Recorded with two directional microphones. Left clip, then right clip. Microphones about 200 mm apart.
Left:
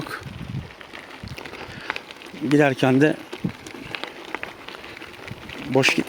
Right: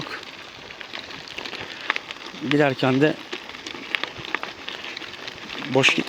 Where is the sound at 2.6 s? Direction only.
30° left (ahead or behind).